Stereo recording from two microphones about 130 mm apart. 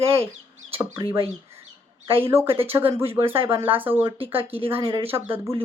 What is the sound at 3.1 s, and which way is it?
Speech, 45° right (ahead or behind).